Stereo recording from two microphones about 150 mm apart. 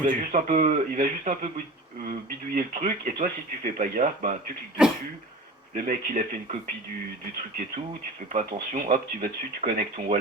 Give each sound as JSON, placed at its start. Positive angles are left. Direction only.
{"t": 0.0, "sound": "speech", "side_deg": -60}
{"t": 4.8, "sound": "speech", "side_deg": -5}
{"t": 5.7, "sound": "speech", "side_deg": -65}
{"t": 8.3, "sound": "speech", "side_deg": -60}